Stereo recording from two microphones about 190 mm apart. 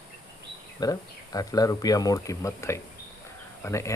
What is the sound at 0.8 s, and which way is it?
Speech, 20° left (ahead or behind).